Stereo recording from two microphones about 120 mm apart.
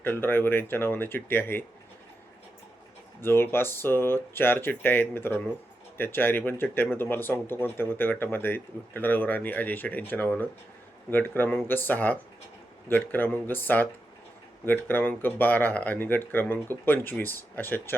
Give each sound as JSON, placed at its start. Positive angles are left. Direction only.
{"t": 0.0, "sound": "speech", "side_deg": 15}
{"t": 3.2, "sound": "speech", "side_deg": 20}